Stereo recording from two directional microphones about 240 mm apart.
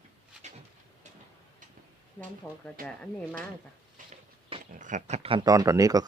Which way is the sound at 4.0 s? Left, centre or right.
Right.